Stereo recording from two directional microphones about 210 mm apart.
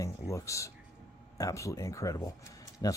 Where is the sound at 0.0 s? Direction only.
15° left (ahead or behind).